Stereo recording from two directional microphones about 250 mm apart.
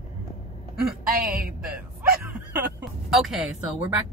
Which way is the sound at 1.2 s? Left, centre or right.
Right.